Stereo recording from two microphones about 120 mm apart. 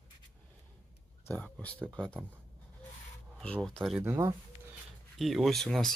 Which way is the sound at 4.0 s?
20° right (ahead or behind).